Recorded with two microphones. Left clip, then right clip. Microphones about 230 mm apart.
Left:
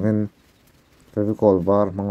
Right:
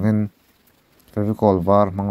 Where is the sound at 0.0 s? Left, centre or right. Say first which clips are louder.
Even; right.